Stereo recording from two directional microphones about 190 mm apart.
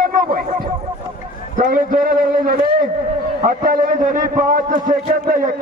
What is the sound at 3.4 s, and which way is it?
A man's voice, 45° right (ahead or behind).